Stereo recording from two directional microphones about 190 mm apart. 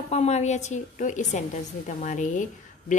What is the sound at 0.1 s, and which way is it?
A woman's voice, 35° left (ahead or behind).